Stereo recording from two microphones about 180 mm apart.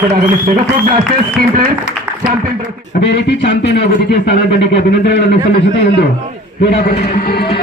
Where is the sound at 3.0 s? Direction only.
70° left (ahead or behind).